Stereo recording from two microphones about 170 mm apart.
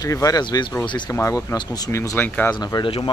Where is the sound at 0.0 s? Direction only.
20° left (ahead or behind).